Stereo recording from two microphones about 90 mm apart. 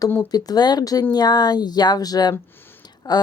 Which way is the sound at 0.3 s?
45° left (ahead or behind).